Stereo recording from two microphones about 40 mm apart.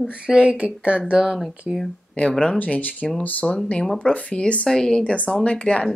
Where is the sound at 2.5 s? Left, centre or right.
Left.